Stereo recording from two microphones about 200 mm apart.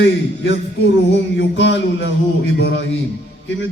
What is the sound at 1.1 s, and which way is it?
Speech, 65° left (ahead or behind).